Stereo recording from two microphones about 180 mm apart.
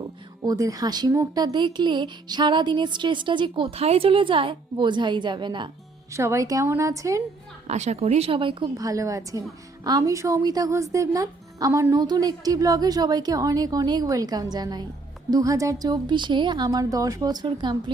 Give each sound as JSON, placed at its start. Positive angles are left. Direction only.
{"t": 0.4, "sound": "speech", "side_deg": -20}
{"t": 7.7, "sound": "speech", "side_deg": -40}